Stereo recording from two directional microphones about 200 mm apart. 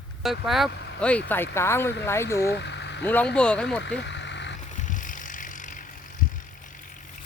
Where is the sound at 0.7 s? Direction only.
55° left (ahead or behind).